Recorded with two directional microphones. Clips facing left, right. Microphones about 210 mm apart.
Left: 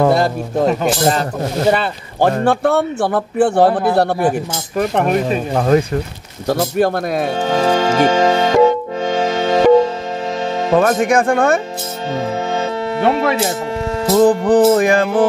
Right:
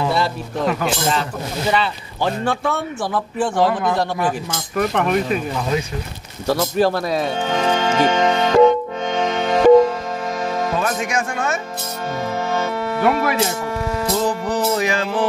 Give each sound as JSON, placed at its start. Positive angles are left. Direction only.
{"t": 0.0, "sound": "speech", "side_deg": 50}
{"t": 1.7, "sound": "speech", "side_deg": 50}
{"t": 3.6, "sound": "speech", "side_deg": 35}
{"t": 3.9, "sound": "a man's voice", "side_deg": 70}
{"t": 4.2, "sound": "speech", "side_deg": 35}
{"t": 5.5, "sound": "music", "side_deg": 55}
{"t": 7.4, "sound": "music", "side_deg": 35}
{"t": 10.7, "sound": "speech", "side_deg": 50}
{"t": 12.5, "sound": "music", "side_deg": 25}
{"t": 14.1, "sound": "music", "side_deg": 55}